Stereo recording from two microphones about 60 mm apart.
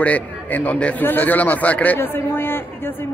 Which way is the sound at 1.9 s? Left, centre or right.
Left.